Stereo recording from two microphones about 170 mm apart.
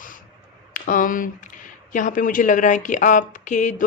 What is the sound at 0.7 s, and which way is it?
Speech, 55° left (ahead or behind).